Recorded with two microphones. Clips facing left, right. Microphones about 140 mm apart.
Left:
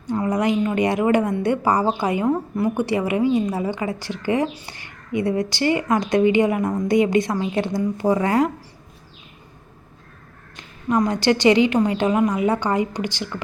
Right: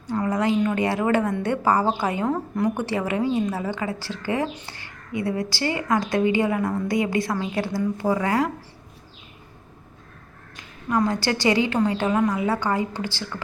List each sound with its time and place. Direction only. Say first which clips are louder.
0.1 s a woman's voice: left 2 dB; 15° left (ahead or behind)
10.6 s a woman's voice: left 2 dB; 20° left (ahead or behind)